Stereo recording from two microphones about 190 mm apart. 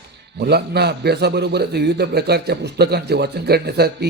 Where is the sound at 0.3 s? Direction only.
60° right (ahead or behind).